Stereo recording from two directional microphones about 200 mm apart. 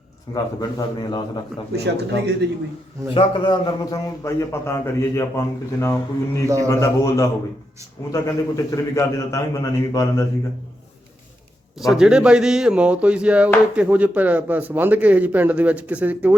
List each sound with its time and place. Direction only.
0.3 s a man's voice: 20° left (ahead or behind)
1.7 s speech: 55° right (ahead or behind)
3.2 s a man's voice: 20° left (ahead or behind)
11.8 s a man's voice: centre (ahead or behind)